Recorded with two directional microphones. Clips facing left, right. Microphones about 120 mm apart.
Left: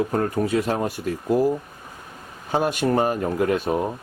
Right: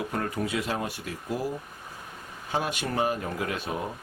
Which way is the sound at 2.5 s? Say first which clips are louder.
Left 8 dB; 45° left (ahead or behind).